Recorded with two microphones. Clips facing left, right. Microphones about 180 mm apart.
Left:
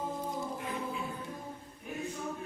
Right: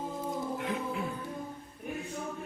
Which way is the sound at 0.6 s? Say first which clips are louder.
Right 3 dB; 70° right (ahead or behind).